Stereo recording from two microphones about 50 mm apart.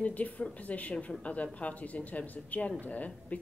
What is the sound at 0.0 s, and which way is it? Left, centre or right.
Speech, left.